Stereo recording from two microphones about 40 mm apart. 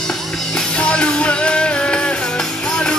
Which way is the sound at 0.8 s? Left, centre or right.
Left.